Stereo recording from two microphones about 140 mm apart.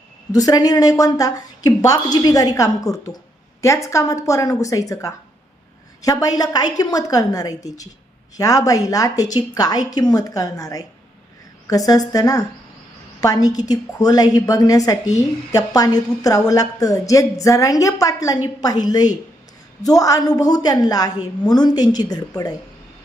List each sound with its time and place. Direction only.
0.3 s a woman's voice: 25° left (ahead or behind)